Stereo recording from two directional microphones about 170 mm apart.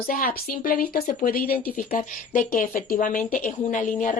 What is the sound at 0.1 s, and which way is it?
Speech, 55° left (ahead or behind).